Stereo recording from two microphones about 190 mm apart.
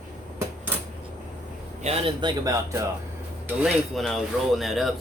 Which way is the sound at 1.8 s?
30° right (ahead or behind).